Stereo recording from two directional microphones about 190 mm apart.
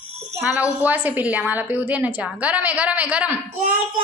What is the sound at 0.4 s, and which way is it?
A woman's voice, 10° right (ahead or behind).